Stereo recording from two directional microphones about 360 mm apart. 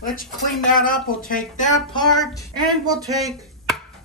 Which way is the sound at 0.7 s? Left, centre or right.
Left.